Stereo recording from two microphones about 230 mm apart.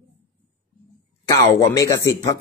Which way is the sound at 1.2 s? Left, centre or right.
Centre.